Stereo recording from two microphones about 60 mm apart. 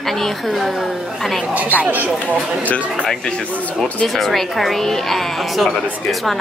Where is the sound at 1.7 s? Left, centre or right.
Right.